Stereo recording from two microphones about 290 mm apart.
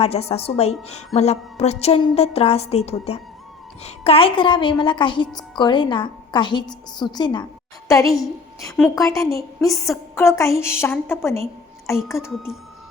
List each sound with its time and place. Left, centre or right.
0.0 s a sound: left
3.8 s a woman's voice: left
8.0 s a woman's voice: centre
12.3 s a woman's voice: centre